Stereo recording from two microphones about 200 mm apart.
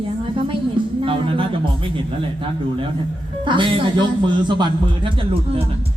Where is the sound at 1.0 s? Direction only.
25° right (ahead or behind).